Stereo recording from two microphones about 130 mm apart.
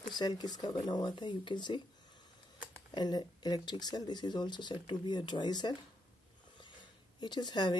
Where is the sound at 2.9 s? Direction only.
35° left (ahead or behind).